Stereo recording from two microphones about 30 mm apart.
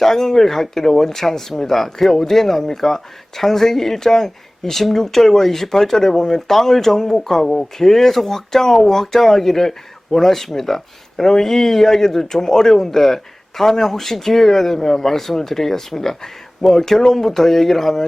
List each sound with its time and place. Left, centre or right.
0.0 s speech: centre